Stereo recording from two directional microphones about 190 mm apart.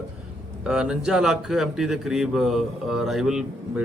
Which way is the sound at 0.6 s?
5° right (ahead or behind).